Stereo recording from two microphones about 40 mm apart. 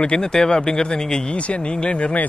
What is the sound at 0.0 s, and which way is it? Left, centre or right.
Speech, centre.